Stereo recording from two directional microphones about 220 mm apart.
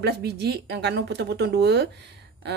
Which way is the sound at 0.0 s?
45° right (ahead or behind).